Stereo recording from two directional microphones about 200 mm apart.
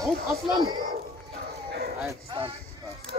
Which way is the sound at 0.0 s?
20° right (ahead or behind).